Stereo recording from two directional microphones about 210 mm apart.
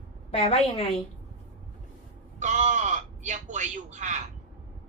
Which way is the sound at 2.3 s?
35° right (ahead or behind).